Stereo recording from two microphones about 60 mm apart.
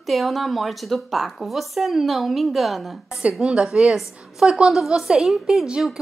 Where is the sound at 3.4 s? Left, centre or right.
Centre.